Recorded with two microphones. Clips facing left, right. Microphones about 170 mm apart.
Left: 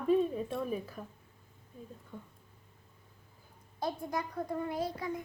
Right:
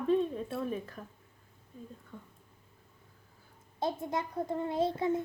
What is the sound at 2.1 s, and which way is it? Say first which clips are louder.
Speech: left 3 dB; 15° left (ahead or behind).